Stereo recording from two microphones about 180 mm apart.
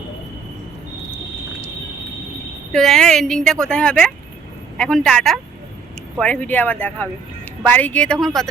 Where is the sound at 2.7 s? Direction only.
Centre (ahead or behind).